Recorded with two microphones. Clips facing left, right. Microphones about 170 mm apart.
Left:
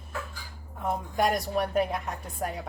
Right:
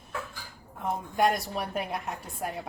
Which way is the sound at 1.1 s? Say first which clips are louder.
Even; centre (ahead or behind).